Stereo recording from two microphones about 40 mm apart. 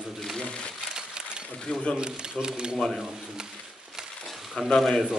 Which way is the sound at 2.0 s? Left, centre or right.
Centre.